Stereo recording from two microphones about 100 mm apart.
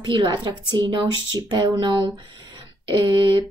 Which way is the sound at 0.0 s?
50° right (ahead or behind).